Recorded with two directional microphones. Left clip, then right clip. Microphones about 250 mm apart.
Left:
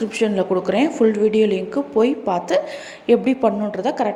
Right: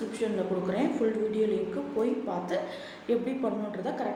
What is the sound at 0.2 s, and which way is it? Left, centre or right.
A woman's voice, left.